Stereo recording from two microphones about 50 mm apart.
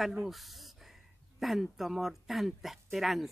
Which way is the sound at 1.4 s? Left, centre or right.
Centre.